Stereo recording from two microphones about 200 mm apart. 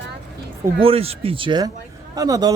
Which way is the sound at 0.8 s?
30° right (ahead or behind).